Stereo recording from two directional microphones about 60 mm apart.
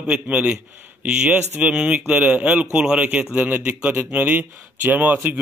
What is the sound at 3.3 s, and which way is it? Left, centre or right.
Speech, right.